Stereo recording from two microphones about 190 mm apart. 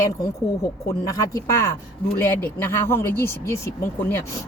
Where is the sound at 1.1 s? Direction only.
15° left (ahead or behind).